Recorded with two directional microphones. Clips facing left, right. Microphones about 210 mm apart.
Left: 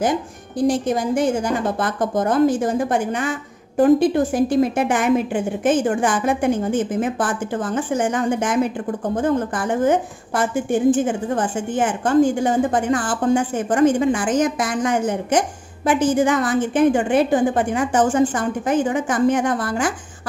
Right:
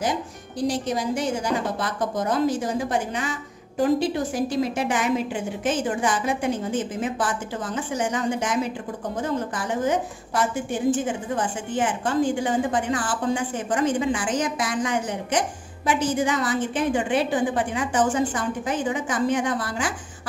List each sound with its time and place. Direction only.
0.0 s a woman's voice: 50° left (ahead or behind)